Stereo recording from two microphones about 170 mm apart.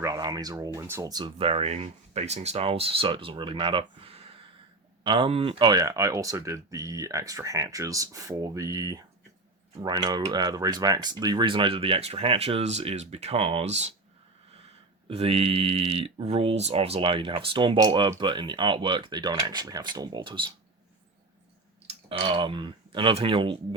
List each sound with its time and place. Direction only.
0.0 s speech: 20° right (ahead or behind); by 13.9 s 40° right (ahead or behind)
15.0 s speech: 35° right (ahead or behind)
21.8 s speech: 30° right (ahead or behind)